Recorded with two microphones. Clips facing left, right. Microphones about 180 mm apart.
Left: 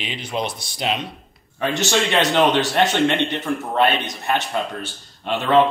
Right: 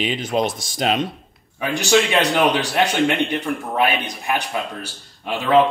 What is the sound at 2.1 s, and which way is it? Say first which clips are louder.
Speech: even; 5° right (ahead or behind).